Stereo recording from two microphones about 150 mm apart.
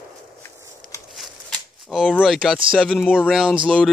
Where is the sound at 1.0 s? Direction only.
Centre (ahead or behind).